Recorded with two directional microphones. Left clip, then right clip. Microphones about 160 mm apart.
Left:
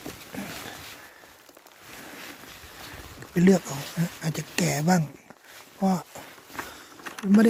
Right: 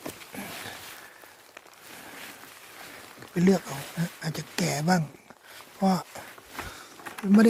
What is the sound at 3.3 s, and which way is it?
Speech, 20° left (ahead or behind).